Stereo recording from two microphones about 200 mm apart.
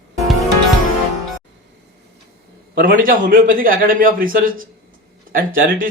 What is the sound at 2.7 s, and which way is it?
A man's voice, 45° right (ahead or behind).